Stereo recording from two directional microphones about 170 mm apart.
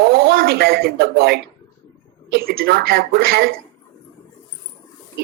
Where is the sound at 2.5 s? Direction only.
60° right (ahead or behind).